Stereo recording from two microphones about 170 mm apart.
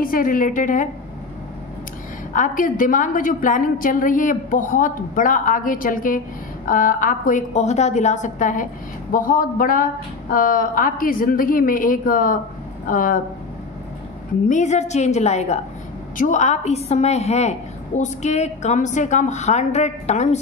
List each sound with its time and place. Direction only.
0.0 s a woman's voice: 55° left (ahead or behind)
2.3 s a woman's voice: 50° left (ahead or behind)
14.5 s a woman's voice: 45° left (ahead or behind)